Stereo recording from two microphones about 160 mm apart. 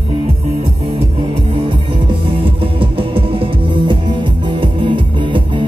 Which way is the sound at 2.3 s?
35° right (ahead or behind).